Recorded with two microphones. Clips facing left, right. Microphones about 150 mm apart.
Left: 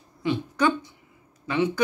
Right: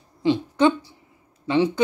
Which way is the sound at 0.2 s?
25° right (ahead or behind).